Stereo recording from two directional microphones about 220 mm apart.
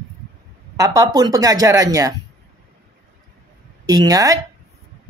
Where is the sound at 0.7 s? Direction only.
15° right (ahead or behind).